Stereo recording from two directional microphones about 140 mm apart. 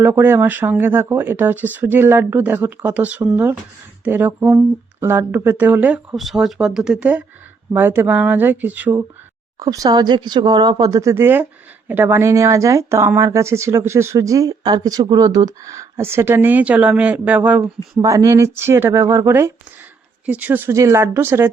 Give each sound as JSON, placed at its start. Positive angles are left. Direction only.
{"t": 0.0, "sound": "speech", "side_deg": -15}
{"t": 6.1, "sound": "speech", "side_deg": 0}
{"t": 9.6, "sound": "speech", "side_deg": -25}
{"t": 17.9, "sound": "speech", "side_deg": -25}